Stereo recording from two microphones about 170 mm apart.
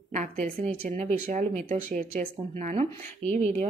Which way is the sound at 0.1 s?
45° right (ahead or behind).